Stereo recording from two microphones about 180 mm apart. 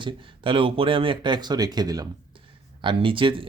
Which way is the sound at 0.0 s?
30° right (ahead or behind).